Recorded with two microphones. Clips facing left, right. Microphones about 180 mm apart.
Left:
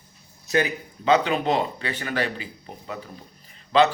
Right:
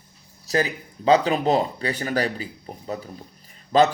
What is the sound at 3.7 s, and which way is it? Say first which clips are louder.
Speech: right 1 dB; 45° right (ahead or behind).